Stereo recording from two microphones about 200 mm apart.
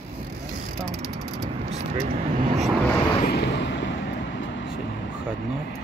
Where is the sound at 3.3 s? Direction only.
60° left (ahead or behind).